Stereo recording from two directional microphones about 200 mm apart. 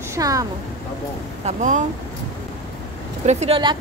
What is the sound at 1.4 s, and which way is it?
Speech, 35° right (ahead or behind).